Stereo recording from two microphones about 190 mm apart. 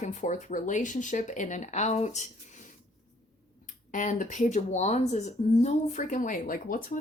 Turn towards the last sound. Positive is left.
turn(degrees=45)  # may be behind; listen again after turning